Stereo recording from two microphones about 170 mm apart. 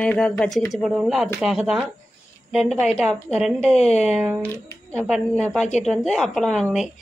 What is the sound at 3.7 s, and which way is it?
Speech, 40° left (ahead or behind).